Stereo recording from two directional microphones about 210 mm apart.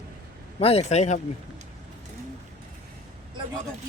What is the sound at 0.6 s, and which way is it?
Speech, 30° left (ahead or behind).